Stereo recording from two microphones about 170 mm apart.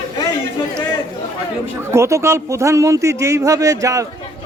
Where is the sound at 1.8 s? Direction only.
15° right (ahead or behind).